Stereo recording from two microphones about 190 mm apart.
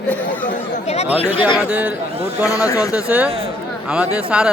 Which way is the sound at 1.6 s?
10° right (ahead or behind).